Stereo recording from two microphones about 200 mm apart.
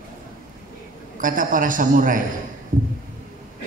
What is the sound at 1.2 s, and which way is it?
A man's voice, 40° right (ahead or behind).